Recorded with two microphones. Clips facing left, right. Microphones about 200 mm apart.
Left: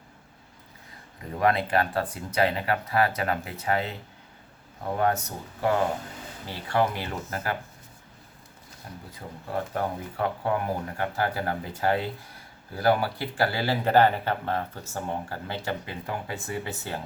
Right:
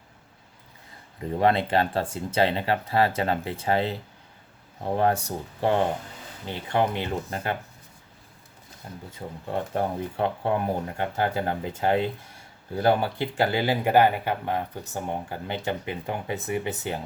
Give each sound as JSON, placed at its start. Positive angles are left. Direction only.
{"t": 1.4, "sound": "speech", "side_deg": -25}
{"t": 8.9, "sound": "speech", "side_deg": -25}